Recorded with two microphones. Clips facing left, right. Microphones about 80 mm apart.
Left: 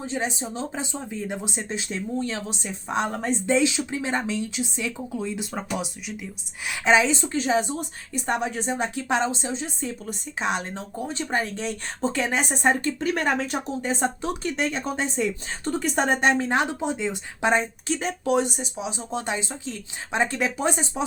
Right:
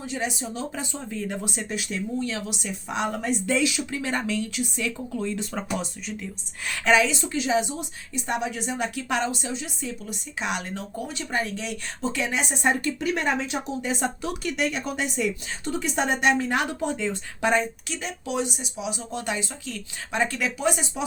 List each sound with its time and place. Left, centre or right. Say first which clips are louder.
0.0 s a woman's voice: left 1 dB; left; by 6.9 s centre
6.9 s a woman's voice: left 1 dB; left
13.1 s a woman's voice: left 1 dB; left
17.9 s a woman's voice: left 6 dB; left